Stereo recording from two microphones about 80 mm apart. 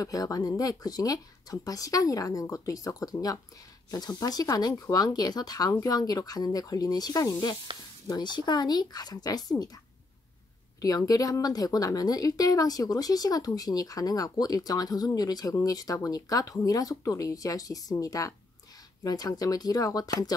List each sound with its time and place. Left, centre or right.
0.0 s a woman's voice: left
8.1 s speech: left
10.8 s a woman's voice: left